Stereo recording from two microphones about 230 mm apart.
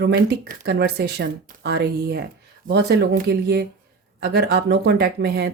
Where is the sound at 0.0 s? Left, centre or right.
Right.